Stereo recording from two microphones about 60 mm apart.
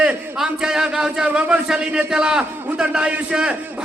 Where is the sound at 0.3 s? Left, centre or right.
Centre.